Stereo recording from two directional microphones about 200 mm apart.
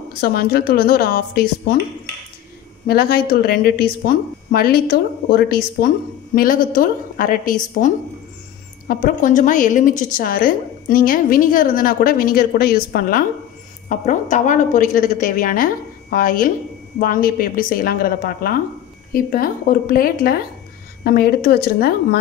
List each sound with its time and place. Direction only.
0.2 s a woman's voice: 50° left (ahead or behind)
2.9 s a woman's voice: 50° left (ahead or behind)